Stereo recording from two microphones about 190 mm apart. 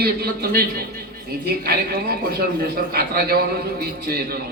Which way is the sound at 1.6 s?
50° right (ahead or behind).